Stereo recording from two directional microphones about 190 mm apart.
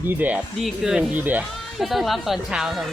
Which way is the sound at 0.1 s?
10° right (ahead or behind).